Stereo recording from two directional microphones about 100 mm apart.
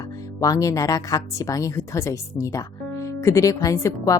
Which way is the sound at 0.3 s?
35° left (ahead or behind).